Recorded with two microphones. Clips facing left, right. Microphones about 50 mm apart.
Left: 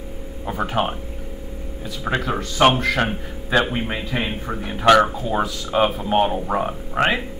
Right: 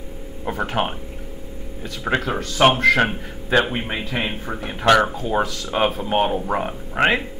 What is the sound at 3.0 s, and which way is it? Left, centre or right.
Speech, centre.